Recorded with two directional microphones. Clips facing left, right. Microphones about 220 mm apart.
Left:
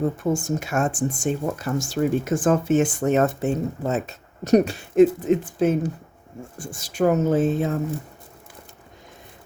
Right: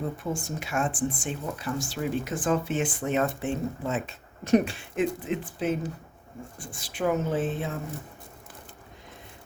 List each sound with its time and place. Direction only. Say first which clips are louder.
0.2 s speech: left 9 dB; 45° left (ahead or behind)